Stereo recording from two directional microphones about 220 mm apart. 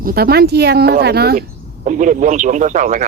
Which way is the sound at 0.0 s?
45° right (ahead or behind).